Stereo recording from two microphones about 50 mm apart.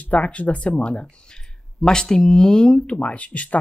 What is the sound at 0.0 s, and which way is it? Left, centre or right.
Speech, left.